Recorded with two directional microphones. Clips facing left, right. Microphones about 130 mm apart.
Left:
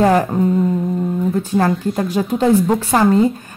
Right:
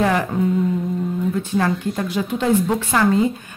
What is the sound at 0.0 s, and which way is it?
A woman's voice, 40° left (ahead or behind).